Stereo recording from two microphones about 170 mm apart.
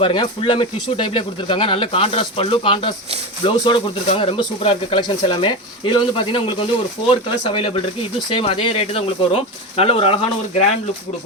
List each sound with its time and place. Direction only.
0.0 s speech: 30° left (ahead or behind)